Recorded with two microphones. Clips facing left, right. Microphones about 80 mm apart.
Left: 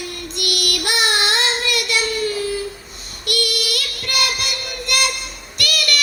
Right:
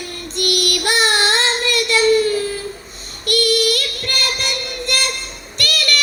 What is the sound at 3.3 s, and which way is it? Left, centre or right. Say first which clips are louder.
Child singing: right 7 dB; right.